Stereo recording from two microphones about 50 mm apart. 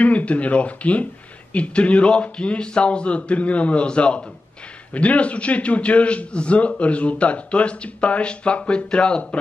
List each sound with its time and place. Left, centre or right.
0.0 s a man's voice: left